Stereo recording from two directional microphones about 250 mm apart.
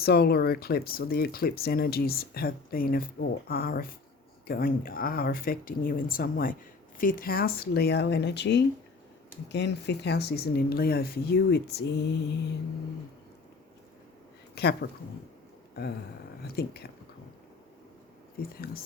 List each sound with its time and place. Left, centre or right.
0.0 s speech: left
14.5 s a woman's voice: left
16.4 s speech: left
18.4 s speech: left